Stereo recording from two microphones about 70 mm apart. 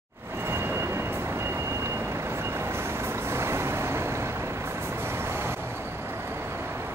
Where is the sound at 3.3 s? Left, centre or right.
Right.